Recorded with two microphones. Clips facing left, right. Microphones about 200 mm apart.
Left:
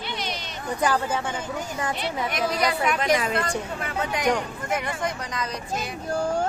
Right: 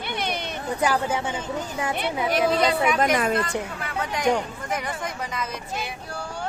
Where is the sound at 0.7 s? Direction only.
10° right (ahead or behind).